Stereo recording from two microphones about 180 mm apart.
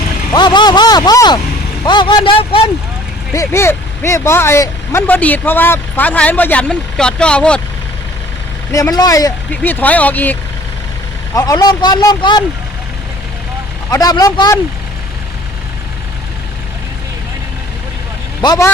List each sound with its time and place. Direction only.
0.3 s speech: 25° left (ahead or behind)
3.3 s speech: 15° left (ahead or behind)
8.7 s speech: 20° left (ahead or behind)
11.3 s speech: 20° left (ahead or behind)
13.9 s speech: 20° left (ahead or behind)
18.4 s speech: 20° left (ahead or behind)